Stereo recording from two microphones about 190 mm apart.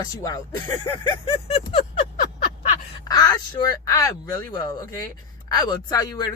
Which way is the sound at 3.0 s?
20° left (ahead or behind).